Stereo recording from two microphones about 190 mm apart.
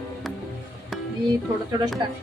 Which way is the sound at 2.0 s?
25° right (ahead or behind).